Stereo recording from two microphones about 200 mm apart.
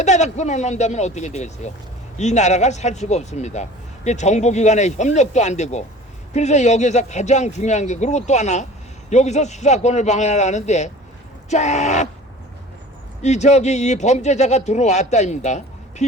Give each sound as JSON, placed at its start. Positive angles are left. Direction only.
{"t": 0.0, "sound": "speech", "side_deg": 35}
{"t": 13.2, "sound": "speech", "side_deg": 35}